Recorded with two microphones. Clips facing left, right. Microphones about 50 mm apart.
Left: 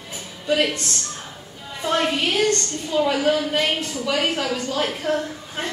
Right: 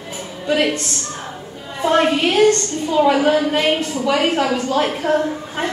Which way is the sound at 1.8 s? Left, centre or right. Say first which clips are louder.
Right 6 dB; right.